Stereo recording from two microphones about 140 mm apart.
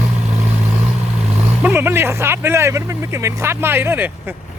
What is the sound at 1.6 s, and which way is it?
Speech, 15° right (ahead or behind).